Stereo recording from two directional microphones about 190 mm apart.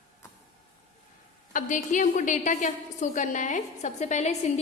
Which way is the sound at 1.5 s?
45° left (ahead or behind).